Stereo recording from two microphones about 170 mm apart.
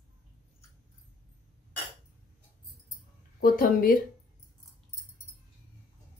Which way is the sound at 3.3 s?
55° left (ahead or behind).